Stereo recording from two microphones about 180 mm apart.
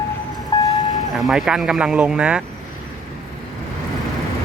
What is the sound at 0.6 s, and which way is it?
Vehicle, 20° left (ahead or behind).